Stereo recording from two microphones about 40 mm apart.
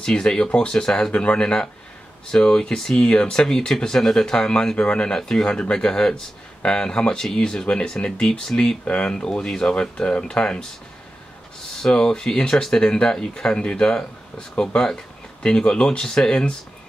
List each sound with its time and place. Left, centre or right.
0.0 s speech: centre
7.6 s speech: left
8.0 s speech: centre
8.8 s speech: left
9.1 s speech: centre
11.7 s speech: centre